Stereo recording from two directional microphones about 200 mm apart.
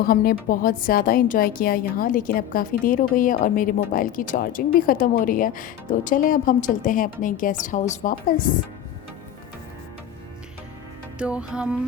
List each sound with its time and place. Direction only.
0.0 s a woman's voice: 45° left (ahead or behind)
11.2 s music: 5° right (ahead or behind)